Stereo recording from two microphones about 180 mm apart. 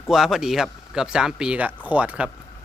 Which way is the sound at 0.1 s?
Centre (ahead or behind).